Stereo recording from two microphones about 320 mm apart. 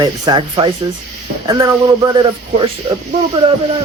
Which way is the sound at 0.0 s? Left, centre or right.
Centre.